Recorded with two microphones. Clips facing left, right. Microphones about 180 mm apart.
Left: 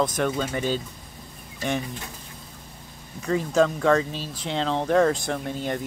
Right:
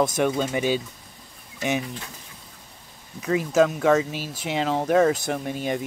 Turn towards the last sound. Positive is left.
turn(degrees=-15)  # may be behind; listen again after turning